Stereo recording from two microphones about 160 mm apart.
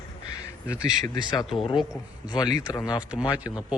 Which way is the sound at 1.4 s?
Centre (ahead or behind).